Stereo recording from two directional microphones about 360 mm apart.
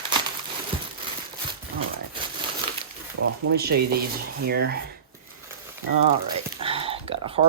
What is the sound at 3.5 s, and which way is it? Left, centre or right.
Speech, right.